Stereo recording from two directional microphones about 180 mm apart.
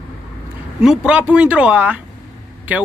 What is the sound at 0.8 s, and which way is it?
A man's voice, 5° right (ahead or behind).